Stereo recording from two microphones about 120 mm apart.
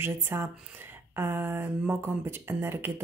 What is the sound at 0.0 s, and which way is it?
Speech, 20° right (ahead or behind).